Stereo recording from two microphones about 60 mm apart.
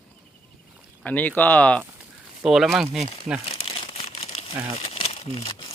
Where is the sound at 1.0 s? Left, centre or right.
Left.